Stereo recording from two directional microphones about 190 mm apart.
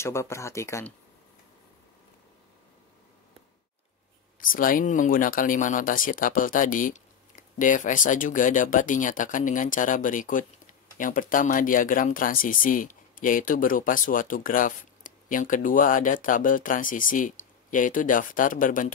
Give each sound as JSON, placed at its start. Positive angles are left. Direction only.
{"t": 0.0, "sound": "speech", "side_deg": 15}
{"t": 4.4, "sound": "speech", "side_deg": 45}